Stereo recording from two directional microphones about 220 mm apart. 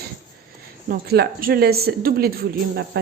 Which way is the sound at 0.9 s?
45° right (ahead or behind).